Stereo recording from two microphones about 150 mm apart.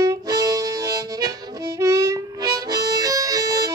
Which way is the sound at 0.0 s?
25° right (ahead or behind).